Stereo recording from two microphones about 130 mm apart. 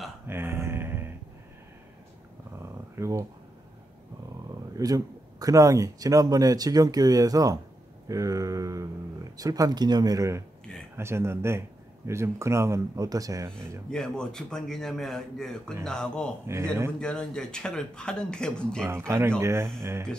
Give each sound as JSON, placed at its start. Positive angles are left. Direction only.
{"t": 0.3, "sound": "a sound", "side_deg": -20}
{"t": 2.6, "sound": "dog", "side_deg": -20}
{"t": 4.7, "sound": "speech", "side_deg": -30}
{"t": 13.8, "sound": "a man's voice", "side_deg": 5}
{"t": 16.5, "sound": "speech", "side_deg": -20}
{"t": 17.0, "sound": "a man's voice", "side_deg": 5}
{"t": 18.9, "sound": "speech", "side_deg": -20}